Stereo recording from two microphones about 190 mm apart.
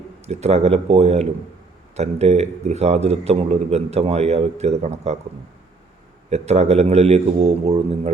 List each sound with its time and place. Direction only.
0.3 s a man's voice: 35° right (ahead or behind)
6.3 s a man's voice: 35° right (ahead or behind)